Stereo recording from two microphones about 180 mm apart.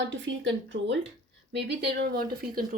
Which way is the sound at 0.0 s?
90° right.